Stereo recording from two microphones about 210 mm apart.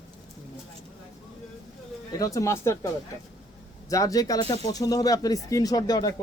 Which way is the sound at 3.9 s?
15° left (ahead or behind).